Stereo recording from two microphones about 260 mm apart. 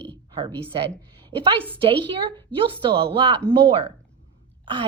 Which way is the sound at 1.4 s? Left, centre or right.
Centre.